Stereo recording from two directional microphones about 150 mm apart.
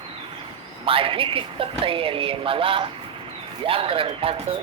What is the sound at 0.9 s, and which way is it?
Speech, 35° right (ahead or behind).